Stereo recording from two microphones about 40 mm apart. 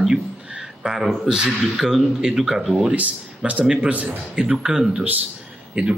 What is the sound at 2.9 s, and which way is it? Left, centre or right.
Speech, right.